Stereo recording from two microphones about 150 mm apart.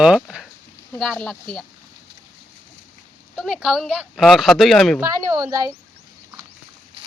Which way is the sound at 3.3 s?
Centre (ahead or behind).